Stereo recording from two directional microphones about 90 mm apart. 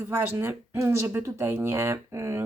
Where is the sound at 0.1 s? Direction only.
25° right (ahead or behind).